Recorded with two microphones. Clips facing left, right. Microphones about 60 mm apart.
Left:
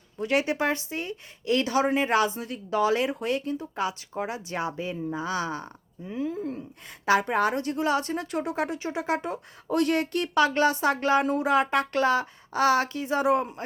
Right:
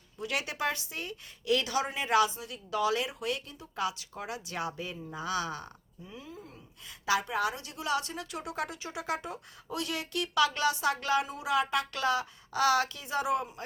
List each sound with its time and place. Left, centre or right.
0.2 s speech: left
6.2 s speech: left
9.6 s speech: left